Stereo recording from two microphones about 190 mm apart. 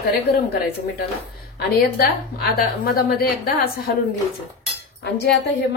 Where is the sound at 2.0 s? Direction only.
55° left (ahead or behind).